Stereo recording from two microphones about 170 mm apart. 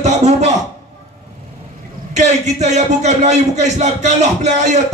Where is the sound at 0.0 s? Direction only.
40° right (ahead or behind).